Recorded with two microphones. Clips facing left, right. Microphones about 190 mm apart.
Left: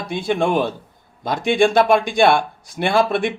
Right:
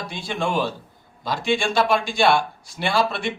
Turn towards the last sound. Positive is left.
turn(degrees=55)  # may be behind; listen again after turning